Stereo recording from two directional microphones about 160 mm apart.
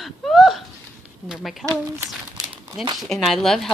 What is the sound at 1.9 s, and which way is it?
Crumpling, 25° right (ahead or behind).